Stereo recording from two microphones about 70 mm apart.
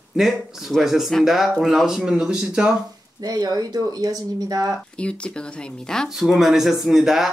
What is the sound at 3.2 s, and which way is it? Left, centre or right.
Speech, right.